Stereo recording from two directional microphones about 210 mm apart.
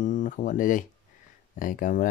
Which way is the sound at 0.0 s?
40° left (ahead or behind).